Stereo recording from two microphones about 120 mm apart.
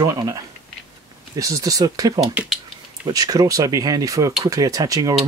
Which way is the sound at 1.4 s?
30° right (ahead or behind).